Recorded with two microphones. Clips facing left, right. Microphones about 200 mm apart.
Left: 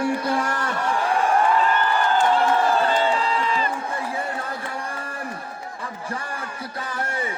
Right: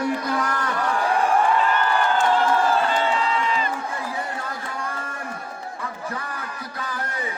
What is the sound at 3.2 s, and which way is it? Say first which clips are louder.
Crowd: even; 35° left (ahead or behind).